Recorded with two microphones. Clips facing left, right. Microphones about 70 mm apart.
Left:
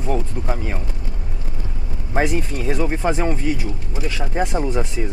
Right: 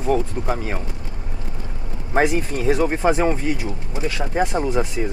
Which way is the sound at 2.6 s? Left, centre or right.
Centre.